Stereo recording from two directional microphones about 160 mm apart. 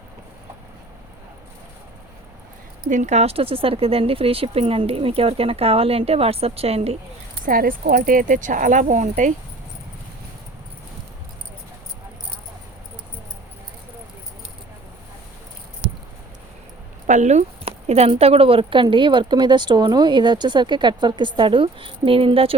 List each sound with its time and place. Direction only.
2.9 s speech: 50° right (ahead or behind)
7.4 s speech: 65° right (ahead or behind)
17.1 s speech: 45° right (ahead or behind)